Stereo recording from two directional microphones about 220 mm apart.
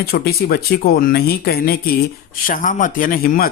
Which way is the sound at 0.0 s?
45° left (ahead or behind).